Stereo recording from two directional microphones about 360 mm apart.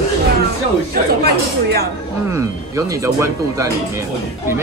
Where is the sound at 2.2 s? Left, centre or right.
Centre.